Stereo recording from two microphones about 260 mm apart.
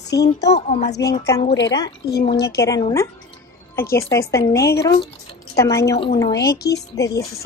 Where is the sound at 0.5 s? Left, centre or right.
Left.